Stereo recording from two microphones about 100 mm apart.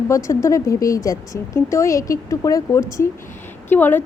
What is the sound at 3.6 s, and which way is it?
Speech, 20° left (ahead or behind).